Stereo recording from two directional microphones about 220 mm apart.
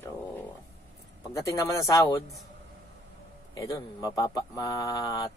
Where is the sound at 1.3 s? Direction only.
15° left (ahead or behind).